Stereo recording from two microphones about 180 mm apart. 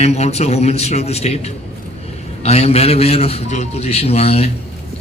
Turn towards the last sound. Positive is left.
turn(degrees=35)  # may be behind; listen again after turning